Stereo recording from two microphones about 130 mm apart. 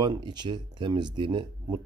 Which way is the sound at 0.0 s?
35° right (ahead or behind).